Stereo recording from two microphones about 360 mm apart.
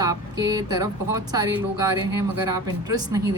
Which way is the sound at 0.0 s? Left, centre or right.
Centre.